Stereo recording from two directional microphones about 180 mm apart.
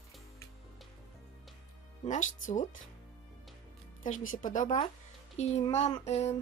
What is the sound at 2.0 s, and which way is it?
Speech, 45° left (ahead or behind).